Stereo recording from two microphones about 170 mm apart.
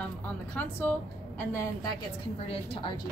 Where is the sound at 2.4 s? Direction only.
30° left (ahead or behind).